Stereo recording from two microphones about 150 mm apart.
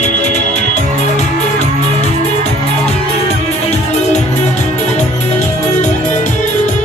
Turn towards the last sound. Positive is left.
turn(degrees=55)  # may be behind; listen again after turning